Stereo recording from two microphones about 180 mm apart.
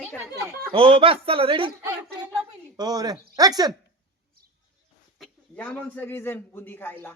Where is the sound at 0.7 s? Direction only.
30° right (ahead or behind).